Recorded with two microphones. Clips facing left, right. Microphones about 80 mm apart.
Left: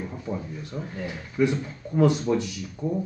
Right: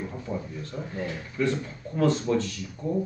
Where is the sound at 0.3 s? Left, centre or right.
Centre.